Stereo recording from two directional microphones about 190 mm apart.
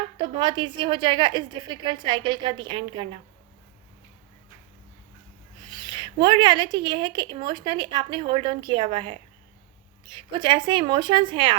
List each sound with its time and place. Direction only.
0.3 s a woman's voice: 25° right (ahead or behind)
5.8 s a woman's voice: 25° right (ahead or behind)